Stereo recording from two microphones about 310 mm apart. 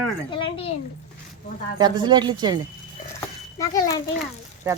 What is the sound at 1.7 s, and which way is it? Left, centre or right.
Speech, centre.